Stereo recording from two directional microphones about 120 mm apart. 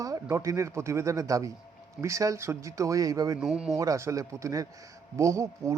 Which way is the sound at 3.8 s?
25° right (ahead or behind).